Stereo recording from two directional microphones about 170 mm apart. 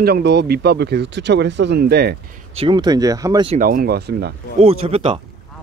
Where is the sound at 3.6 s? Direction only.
55° right (ahead or behind); by 4.3 s 70° right (ahead or behind).